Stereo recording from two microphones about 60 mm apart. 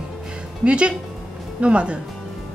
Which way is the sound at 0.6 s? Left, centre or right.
Centre.